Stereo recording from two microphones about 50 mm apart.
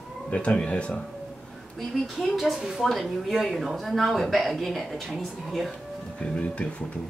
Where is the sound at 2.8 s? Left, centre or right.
Centre.